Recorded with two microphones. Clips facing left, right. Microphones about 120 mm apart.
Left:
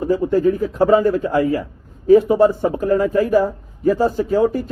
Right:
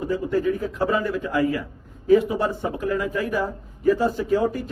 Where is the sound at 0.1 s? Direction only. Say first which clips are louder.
Left 7 dB; 35° left (ahead or behind).